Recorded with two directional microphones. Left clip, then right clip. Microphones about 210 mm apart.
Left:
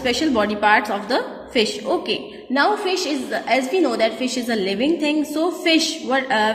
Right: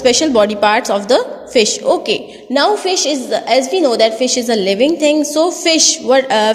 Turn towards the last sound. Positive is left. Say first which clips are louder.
# right 8 dB
turn(degrees=-45)  # may be behind; listen again after turning